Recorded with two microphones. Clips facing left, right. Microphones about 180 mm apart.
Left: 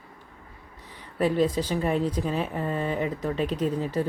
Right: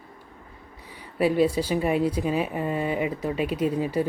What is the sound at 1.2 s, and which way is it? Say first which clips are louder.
A woman's voice: right 2 dB; 10° right (ahead or behind).